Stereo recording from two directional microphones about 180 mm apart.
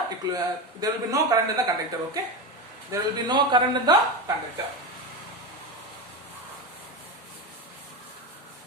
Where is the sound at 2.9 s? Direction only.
25° right (ahead or behind).